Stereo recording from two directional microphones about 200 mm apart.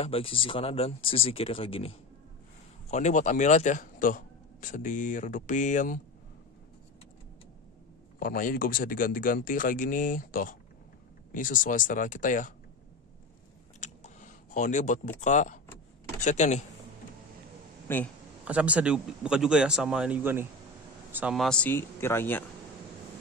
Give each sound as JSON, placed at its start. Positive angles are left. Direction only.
{"t": 0.0, "sound": "speech", "side_deg": 25}
{"t": 8.2, "sound": "speech", "side_deg": 45}
{"t": 13.7, "sound": "a sound", "side_deg": 35}
{"t": 16.2, "sound": "speech", "side_deg": 35}
{"t": 17.8, "sound": "speech", "side_deg": 10}
{"t": 18.4, "sound": "speech", "side_deg": -5}